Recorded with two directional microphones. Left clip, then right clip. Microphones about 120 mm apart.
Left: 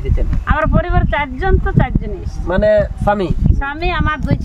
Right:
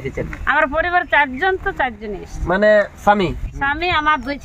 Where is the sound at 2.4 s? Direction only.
30° left (ahead or behind).